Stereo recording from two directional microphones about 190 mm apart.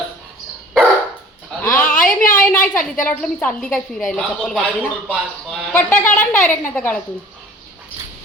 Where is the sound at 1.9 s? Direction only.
45° left (ahead or behind).